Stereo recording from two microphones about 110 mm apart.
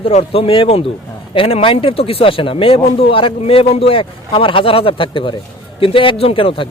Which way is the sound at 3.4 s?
65° left (ahead or behind).